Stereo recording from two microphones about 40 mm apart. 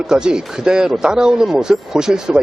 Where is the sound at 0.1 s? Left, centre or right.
Right.